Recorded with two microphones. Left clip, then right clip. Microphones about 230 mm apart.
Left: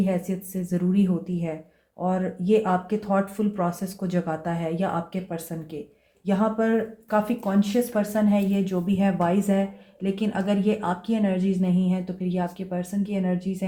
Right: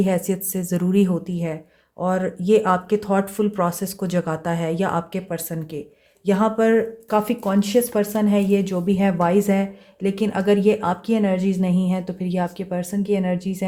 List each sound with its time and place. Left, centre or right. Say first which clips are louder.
0.0 s speech: right 6 dB; right